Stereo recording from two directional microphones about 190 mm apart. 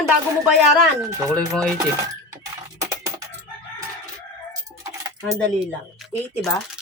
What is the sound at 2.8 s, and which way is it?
Typing, 20° right (ahead or behind).